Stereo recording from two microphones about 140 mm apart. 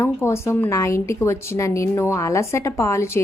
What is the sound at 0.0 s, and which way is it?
A woman's voice, 20° left (ahead or behind).